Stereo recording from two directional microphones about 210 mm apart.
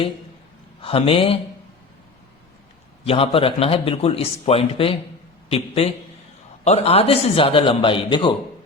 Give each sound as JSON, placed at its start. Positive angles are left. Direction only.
{"t": 0.8, "sound": "a man's voice", "side_deg": 25}
{"t": 3.0, "sound": "a man's voice", "side_deg": 25}